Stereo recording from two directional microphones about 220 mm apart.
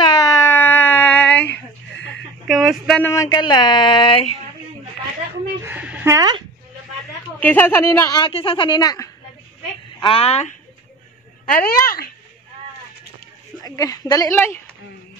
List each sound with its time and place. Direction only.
0.0 s a sound: 20° left (ahead or behind)
1.5 s a sound: 50° left (ahead or behind)
2.4 s speech: centre (ahead or behind); by 4.3 s 25° left (ahead or behind)
5.6 s a woman's voice: 10° right (ahead or behind)
7.3 s a woman's voice: 10° left (ahead or behind); by 10.5 s 30° left (ahead or behind)
11.5 s speech: 45° left (ahead or behind)
13.6 s speech: 15° left (ahead or behind)